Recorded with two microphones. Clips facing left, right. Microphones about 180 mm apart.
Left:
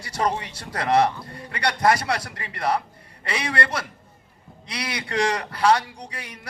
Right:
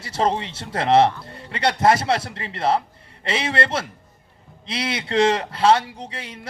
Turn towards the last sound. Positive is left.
turn(degrees=-25)  # may be behind; listen again after turning